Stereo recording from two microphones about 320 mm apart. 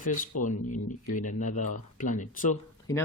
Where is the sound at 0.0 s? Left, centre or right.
Left.